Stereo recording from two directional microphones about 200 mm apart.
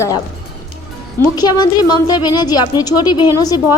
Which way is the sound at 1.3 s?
20° left (ahead or behind).